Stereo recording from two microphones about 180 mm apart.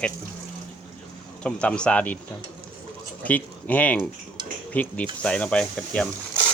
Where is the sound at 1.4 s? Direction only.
5° left (ahead or behind).